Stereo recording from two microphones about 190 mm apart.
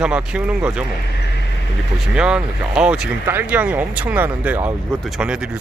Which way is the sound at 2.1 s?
5° right (ahead or behind).